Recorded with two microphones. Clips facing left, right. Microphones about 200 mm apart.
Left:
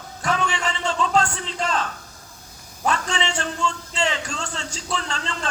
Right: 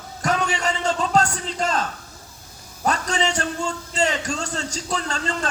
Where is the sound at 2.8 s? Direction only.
40° right (ahead or behind).